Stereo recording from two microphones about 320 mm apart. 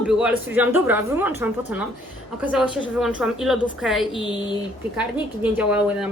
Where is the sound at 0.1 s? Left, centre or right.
Centre.